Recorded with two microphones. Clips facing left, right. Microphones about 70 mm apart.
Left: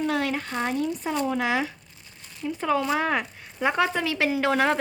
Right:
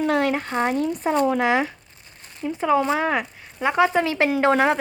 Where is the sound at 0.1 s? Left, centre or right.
Right.